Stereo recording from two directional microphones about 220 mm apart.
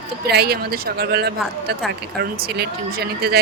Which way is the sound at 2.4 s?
45° right (ahead or behind).